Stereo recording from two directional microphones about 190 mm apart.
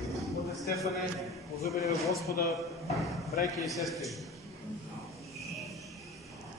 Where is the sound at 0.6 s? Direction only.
15° left (ahead or behind).